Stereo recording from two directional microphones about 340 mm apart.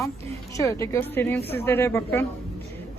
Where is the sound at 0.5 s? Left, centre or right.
Centre.